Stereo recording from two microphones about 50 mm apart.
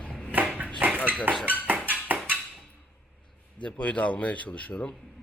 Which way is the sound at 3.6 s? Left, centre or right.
Left.